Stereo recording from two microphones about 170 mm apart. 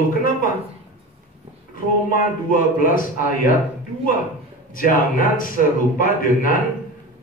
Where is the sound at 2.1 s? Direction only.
55° left (ahead or behind).